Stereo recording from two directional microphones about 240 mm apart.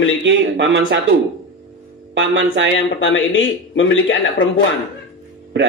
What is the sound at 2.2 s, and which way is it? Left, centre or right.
Speech, right.